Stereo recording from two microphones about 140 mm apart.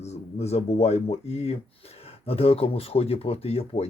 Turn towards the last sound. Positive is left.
turn(degrees=45)  # may be behind; listen again after turning